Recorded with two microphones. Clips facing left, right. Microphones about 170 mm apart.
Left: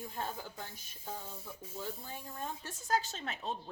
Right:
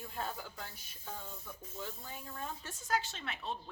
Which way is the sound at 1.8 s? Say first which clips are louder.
Left 2 dB; 35° left (ahead or behind).